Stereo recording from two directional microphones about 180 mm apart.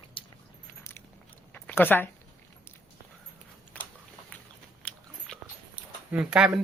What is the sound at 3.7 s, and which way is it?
Biting, 10° left (ahead or behind).